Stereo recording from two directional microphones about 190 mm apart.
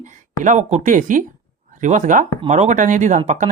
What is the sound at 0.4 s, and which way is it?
Speech, 40° right (ahead or behind).